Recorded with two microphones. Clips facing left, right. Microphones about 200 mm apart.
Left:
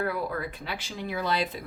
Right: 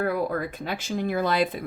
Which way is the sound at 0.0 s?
45° right (ahead or behind).